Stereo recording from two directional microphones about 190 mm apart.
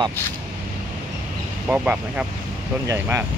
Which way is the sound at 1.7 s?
5° right (ahead or behind).